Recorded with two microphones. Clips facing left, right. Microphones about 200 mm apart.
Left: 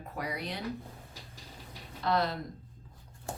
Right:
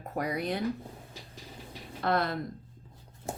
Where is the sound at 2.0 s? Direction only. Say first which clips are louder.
Right 1 dB; 55° right (ahead or behind).